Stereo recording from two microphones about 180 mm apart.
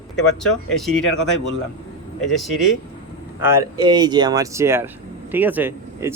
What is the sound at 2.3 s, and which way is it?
Speech, centre (ahead or behind).